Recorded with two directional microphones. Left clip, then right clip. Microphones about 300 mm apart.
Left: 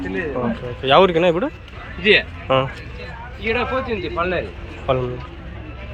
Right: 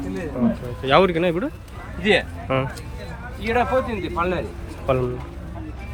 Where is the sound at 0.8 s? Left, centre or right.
Centre.